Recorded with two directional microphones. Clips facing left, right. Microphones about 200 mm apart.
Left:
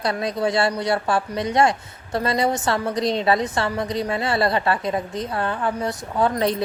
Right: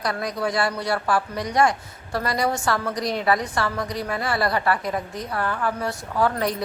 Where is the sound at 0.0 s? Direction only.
25° left (ahead or behind).